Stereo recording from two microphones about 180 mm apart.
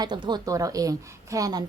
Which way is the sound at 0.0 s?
25° right (ahead or behind).